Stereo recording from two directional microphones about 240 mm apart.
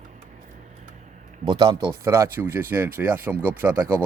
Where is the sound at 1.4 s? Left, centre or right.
Centre.